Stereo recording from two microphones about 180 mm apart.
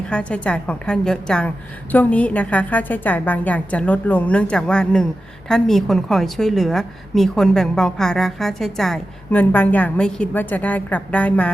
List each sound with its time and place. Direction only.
0.1 s a woman's voice: 5° left (ahead or behind)